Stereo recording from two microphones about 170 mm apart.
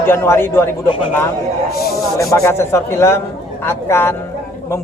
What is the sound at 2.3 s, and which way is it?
A man's voice, 15° left (ahead or behind).